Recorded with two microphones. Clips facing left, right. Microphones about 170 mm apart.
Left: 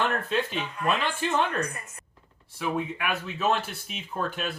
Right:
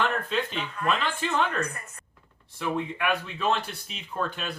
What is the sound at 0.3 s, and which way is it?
Speech, 10° left (ahead or behind).